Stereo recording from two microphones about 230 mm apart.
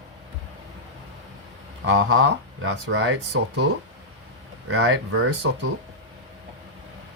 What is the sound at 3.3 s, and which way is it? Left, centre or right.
Speech, right.